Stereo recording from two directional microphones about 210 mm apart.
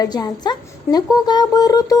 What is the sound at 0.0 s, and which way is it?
Speech, 20° left (ahead or behind).